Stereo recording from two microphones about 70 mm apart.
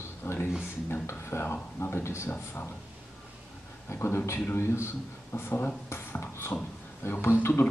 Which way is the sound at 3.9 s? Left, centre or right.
Left.